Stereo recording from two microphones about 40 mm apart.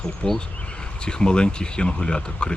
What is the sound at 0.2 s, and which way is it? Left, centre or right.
Speech, left.